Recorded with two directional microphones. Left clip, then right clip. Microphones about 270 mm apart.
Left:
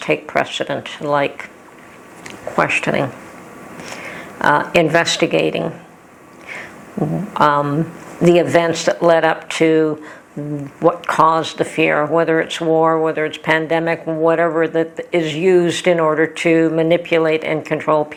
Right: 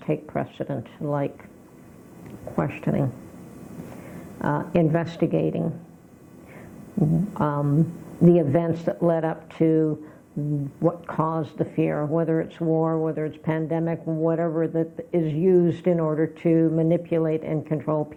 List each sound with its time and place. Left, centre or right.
0.0 s speech: centre
7.3 s speech: centre
11.3 s speech: centre